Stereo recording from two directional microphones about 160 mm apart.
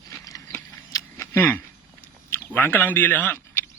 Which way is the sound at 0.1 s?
20° left (ahead or behind).